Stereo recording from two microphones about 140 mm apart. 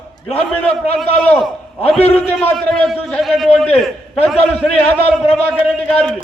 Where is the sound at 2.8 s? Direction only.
Centre (ahead or behind).